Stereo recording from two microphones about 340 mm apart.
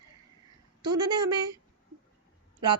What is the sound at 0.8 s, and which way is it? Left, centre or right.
Speech, centre.